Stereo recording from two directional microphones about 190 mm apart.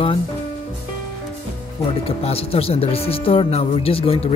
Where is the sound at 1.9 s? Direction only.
30° left (ahead or behind).